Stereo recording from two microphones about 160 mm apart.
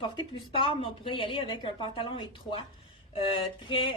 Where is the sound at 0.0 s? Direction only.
30° left (ahead or behind).